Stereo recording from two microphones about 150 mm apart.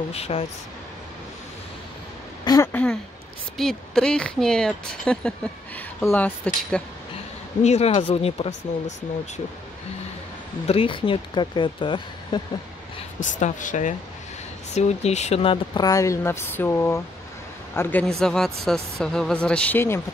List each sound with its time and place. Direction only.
0.1 s speech: 40° left (ahead or behind)
2.4 s speech: 25° left (ahead or behind)
2.7 s speech: 10° left (ahead or behind)
7.6 s speech: 45° left (ahead or behind)
10.7 s speech: 35° left (ahead or behind)
13.2 s speech: 60° left (ahead or behind); by 20.0 s 15° left (ahead or behind)